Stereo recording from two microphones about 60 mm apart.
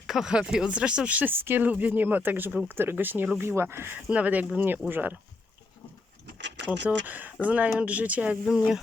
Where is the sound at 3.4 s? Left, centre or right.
Right.